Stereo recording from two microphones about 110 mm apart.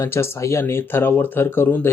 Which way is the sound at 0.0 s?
25° left (ahead or behind).